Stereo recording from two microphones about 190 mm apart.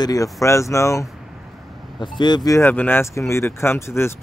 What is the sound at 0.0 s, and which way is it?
Speech, 15° left (ahead or behind).